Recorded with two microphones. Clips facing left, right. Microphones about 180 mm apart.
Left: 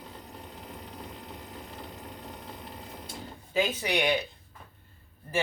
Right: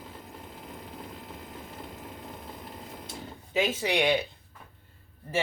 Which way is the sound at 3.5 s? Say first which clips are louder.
Right 1 dB; 25° right (ahead or behind).